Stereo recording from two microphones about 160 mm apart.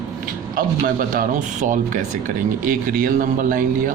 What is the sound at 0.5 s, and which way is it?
Speech, 60° right (ahead or behind).